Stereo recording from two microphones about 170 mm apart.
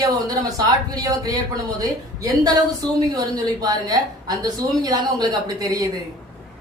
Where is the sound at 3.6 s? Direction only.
20° right (ahead or behind).